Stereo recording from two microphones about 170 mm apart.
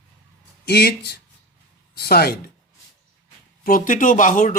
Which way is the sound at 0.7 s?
70° left (ahead or behind).